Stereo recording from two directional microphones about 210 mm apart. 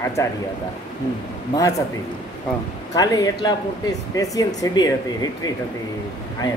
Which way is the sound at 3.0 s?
15° left (ahead or behind).